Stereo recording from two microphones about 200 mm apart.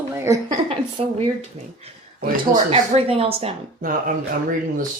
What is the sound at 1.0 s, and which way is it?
Speech, 30° right (ahead or behind).